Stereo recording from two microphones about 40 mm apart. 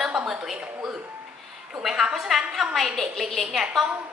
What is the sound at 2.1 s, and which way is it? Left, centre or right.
A woman's voice, centre.